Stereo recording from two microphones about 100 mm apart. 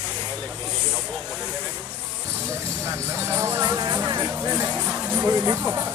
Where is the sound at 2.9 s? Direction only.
30° right (ahead or behind).